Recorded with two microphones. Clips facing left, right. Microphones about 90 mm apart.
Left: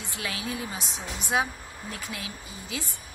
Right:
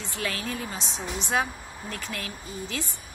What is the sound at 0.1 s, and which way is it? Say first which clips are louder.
Speech: right 2 dB; 15° left (ahead or behind).